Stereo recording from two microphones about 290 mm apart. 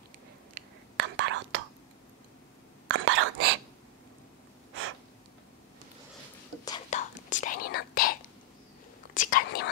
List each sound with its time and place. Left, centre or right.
0.6 s whispering: right
2.9 s whispering: right
6.6 s whispering: centre
7.2 s whispering: left
9.1 s whispering: left